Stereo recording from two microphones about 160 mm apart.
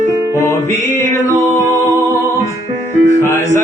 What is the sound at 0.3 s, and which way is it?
Music, 15° left (ahead or behind).